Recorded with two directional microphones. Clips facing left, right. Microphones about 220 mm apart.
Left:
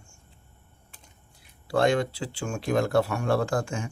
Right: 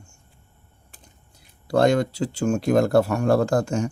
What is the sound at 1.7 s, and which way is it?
Speech, 40° right (ahead or behind).